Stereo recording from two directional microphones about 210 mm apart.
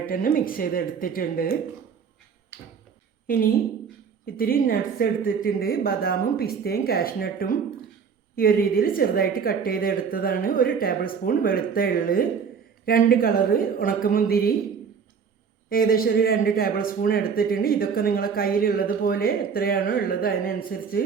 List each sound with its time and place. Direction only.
0.0 s speech: 40° left (ahead or behind)
3.2 s a woman's voice: 45° left (ahead or behind)
15.7 s speech: 45° left (ahead or behind)